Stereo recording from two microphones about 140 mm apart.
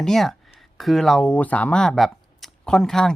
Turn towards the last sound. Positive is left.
turn(degrees=5)  # may be behind; listen again after turning